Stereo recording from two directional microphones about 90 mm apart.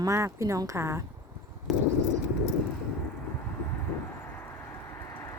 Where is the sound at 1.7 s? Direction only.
Centre (ahead or behind).